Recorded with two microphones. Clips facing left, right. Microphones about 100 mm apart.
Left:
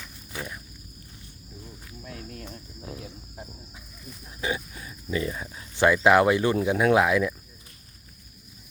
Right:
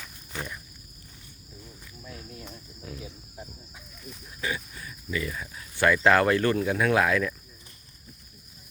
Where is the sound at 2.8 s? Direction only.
25° left (ahead or behind).